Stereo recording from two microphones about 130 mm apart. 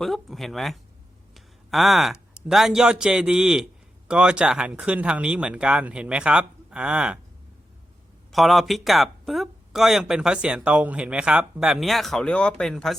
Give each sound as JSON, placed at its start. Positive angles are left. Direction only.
{"t": 0.0, "sound": "speech", "side_deg": 0}
{"t": 1.3, "sound": "a sound", "side_deg": 0}
{"t": 2.5, "sound": "speech", "side_deg": -5}
{"t": 8.3, "sound": "speech", "side_deg": 0}